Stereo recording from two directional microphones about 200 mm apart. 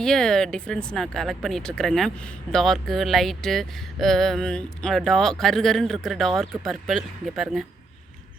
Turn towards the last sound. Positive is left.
turn(degrees=0)  # may be behind; listen again after turning